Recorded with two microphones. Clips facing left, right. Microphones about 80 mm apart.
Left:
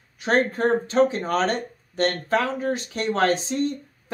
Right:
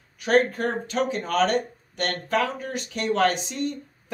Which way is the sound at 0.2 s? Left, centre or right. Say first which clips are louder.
Even; left.